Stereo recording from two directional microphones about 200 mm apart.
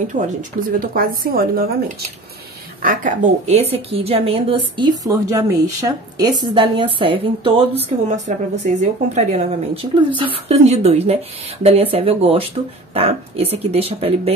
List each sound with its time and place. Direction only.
0.1 s a woman's voice: 40° right (ahead or behind)
2.8 s a woman's voice: 40° right (ahead or behind)